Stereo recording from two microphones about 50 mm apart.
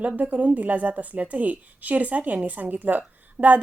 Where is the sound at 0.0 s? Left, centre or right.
Right.